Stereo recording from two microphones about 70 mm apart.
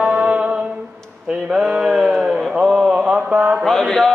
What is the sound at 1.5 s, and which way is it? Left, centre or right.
Mantra, centre.